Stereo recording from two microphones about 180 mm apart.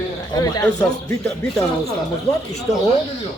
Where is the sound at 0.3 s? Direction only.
20° left (ahead or behind).